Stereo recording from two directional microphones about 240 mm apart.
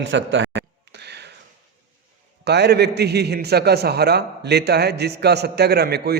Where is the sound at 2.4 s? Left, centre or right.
Right.